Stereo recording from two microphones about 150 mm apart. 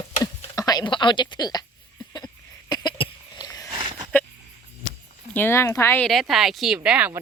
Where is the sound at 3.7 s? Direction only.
35° right (ahead or behind).